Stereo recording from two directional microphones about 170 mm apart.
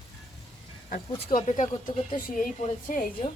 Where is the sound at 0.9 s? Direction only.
50° left (ahead or behind).